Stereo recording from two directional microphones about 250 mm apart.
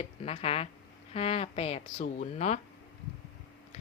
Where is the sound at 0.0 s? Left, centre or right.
Left.